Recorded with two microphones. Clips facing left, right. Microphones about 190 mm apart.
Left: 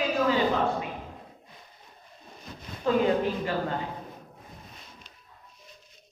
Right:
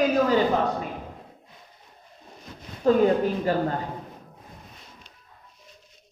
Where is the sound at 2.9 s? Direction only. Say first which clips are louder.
Right 5 dB; 40° right (ahead or behind).